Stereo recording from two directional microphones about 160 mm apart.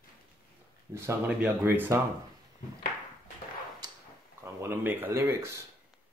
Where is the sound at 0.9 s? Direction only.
10° right (ahead or behind).